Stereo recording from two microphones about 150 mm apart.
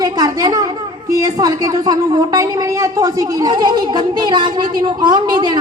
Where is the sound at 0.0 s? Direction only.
25° right (ahead or behind).